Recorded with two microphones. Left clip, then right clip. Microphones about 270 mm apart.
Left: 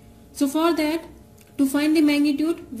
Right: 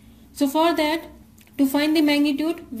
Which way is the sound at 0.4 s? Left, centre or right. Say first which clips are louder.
Right 2 dB; centre.